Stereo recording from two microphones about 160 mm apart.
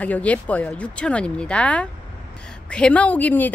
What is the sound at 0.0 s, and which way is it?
Speech, 10° left (ahead or behind).